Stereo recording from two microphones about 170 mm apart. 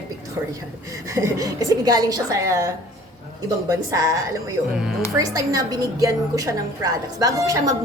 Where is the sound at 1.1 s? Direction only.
15° right (ahead or behind).